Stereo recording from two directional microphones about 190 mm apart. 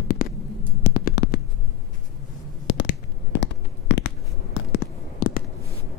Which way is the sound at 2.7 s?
70° left (ahead or behind).